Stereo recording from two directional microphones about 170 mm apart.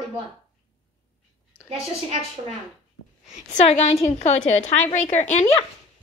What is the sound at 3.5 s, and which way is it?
A woman's voice, 40° left (ahead or behind).